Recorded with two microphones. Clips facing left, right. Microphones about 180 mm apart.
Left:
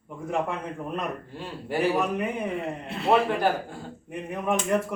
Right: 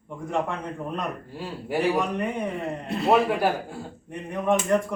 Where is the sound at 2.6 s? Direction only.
40° right (ahead or behind).